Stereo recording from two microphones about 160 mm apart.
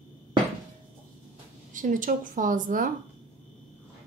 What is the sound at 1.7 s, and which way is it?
Speech, 55° right (ahead or behind).